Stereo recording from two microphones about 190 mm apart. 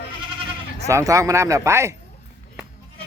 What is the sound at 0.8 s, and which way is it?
Speech, 15° right (ahead or behind).